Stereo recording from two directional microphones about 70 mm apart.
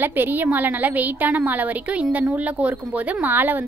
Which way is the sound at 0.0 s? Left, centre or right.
Right.